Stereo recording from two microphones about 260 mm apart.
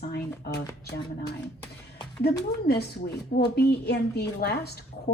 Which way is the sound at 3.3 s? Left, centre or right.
Left.